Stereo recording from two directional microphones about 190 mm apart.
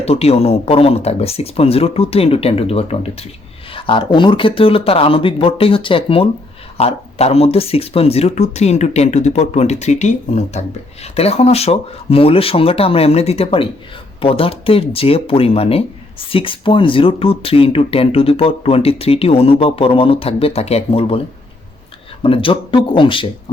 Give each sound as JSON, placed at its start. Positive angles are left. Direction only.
{"t": 0.0, "sound": "speech", "side_deg": 35}
{"t": 22.2, "sound": "speech", "side_deg": 30}